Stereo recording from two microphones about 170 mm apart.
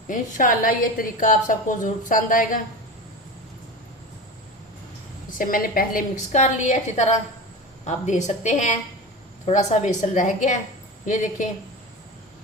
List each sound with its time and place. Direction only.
0.1 s a woman's voice: 50° left (ahead or behind)
5.4 s a woman's voice: 55° left (ahead or behind)